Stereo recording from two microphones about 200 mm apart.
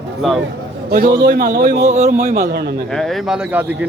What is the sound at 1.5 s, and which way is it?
Speech, 55° right (ahead or behind).